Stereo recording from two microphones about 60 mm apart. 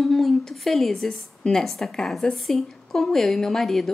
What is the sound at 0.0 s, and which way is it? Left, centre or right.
A woman's voice, centre.